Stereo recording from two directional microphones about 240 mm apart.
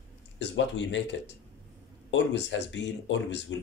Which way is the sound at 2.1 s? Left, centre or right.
Left.